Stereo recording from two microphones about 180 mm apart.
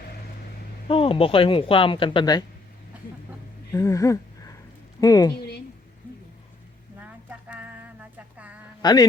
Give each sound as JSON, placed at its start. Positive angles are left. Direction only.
{"t": 0.9, "sound": "speech", "side_deg": 30}
{"t": 3.7, "sound": "a woman's voice", "side_deg": 15}
{"t": 5.4, "sound": "a sound", "side_deg": 60}
{"t": 7.0, "sound": "music", "side_deg": -10}
{"t": 8.8, "sound": "a man's voice", "side_deg": 25}